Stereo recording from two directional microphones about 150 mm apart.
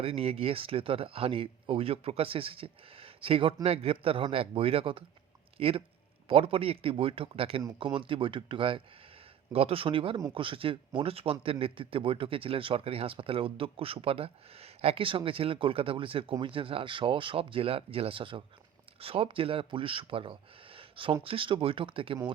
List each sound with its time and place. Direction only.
0.0 s a man's voice: 40° right (ahead or behind)